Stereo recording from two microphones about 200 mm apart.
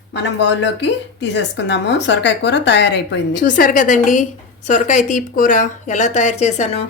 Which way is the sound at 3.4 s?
40° left (ahead or behind).